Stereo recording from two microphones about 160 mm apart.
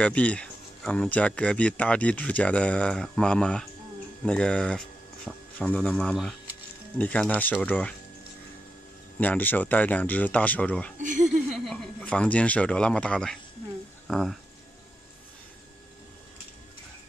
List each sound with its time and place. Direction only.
0.0 s speech: 10° left (ahead or behind)
9.2 s speech: 10° left (ahead or behind)
11.0 s a sound: 55° right (ahead or behind)
11.2 s speech: centre (ahead or behind)